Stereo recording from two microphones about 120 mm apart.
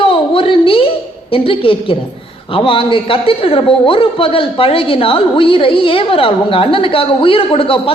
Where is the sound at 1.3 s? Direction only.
50° left (ahead or behind).